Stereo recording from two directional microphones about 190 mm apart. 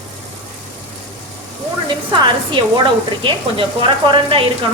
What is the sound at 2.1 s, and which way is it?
Speech, 25° right (ahead or behind).